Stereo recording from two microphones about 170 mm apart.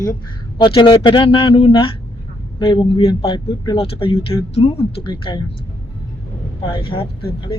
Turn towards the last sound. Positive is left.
turn(degrees=30)  # may be behind; listen again after turning